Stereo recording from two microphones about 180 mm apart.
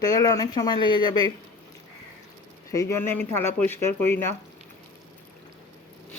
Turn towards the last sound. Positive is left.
turn(degrees=15)  # may be behind; listen again after turning